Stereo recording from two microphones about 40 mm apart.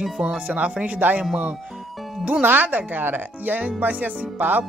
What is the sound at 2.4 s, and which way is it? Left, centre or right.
Speech, right.